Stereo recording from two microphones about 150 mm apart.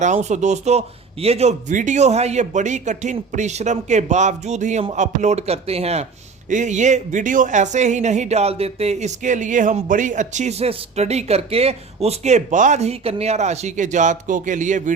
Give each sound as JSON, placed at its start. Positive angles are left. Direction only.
{"t": 0.0, "sound": "speech", "side_deg": -50}